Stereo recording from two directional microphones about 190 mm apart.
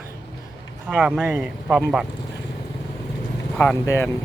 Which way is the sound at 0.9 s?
5° right (ahead or behind).